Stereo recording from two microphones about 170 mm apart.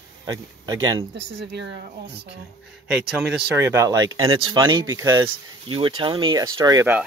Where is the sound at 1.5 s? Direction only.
90° right.